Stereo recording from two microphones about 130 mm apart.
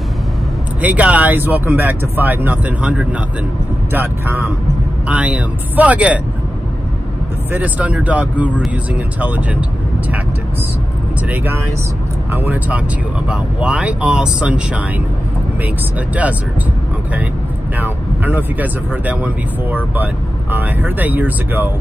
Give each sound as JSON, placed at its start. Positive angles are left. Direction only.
{"t": 0.7, "sound": "speech", "side_deg": -10}
{"t": 7.5, "sound": "speech", "side_deg": -10}
{"t": 11.2, "sound": "speech", "side_deg": -15}
{"t": 17.7, "sound": "speech", "side_deg": -15}